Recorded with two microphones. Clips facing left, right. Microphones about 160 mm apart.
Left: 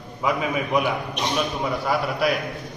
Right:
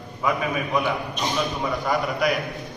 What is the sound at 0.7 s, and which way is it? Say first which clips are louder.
Speech: left 2 dB; 20° left (ahead or behind).